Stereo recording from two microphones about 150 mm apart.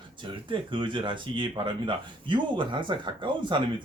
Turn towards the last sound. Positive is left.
turn(degrees=-30)  # may be behind; listen again after turning